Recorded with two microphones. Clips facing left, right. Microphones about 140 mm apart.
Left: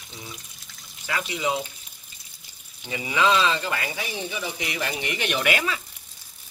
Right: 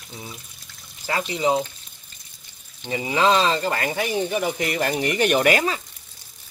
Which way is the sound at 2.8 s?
30° right (ahead or behind).